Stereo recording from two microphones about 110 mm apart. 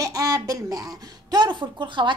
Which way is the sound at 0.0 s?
35° right (ahead or behind).